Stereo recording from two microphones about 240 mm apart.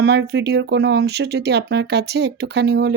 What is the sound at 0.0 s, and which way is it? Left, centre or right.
Speech, right.